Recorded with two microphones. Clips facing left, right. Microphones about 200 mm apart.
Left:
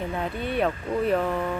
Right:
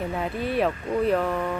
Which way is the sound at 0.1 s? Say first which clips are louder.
Right 1 dB; centre (ahead or behind).